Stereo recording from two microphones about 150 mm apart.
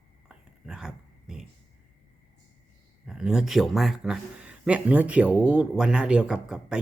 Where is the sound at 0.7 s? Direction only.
5° right (ahead or behind).